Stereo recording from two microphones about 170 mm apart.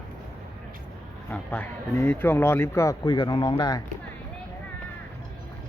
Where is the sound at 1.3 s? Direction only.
10° left (ahead or behind); by 3.8 s 25° left (ahead or behind).